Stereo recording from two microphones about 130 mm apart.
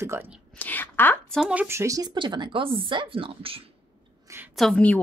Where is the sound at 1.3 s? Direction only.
10° right (ahead or behind).